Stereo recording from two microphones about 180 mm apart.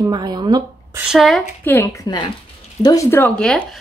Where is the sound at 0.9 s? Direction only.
Centre (ahead or behind).